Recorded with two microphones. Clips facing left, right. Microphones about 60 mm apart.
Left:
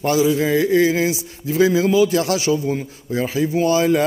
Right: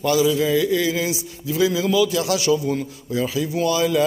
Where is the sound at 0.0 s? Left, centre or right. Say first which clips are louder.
Left 1 dB; left.